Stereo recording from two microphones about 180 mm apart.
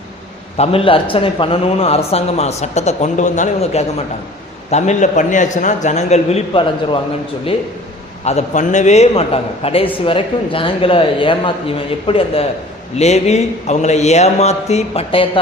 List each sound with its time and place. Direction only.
0.5 s a man's voice: 35° left (ahead or behind)
8.2 s a man's voice: 35° left (ahead or behind)